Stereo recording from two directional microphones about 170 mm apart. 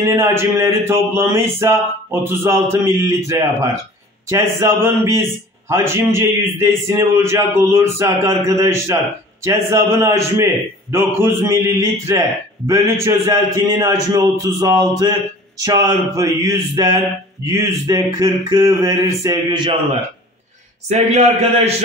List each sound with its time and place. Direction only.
0.0 s a sound: 15° right (ahead or behind)
12.6 s a man's voice: 15° right (ahead or behind)
20.9 s a man's voice: 40° right (ahead or behind)